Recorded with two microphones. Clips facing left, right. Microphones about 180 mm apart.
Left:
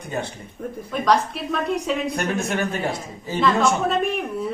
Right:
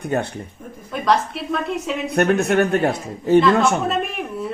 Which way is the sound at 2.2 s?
65° right (ahead or behind).